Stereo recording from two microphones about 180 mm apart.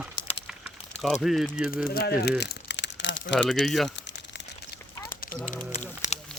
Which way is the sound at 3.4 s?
Centre (ahead or behind).